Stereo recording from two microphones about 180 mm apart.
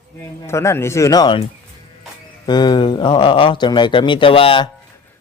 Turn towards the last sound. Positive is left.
turn(degrees=30)  # may be behind; listen again after turning